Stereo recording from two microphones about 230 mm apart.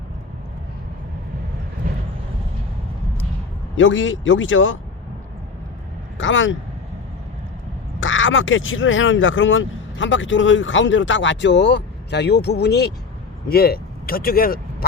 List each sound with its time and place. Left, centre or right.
3.8 s speech: left
6.1 s speech: left
8.0 s speech: left